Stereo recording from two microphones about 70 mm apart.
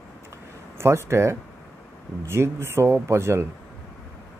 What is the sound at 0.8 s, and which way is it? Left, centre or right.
Speech, right.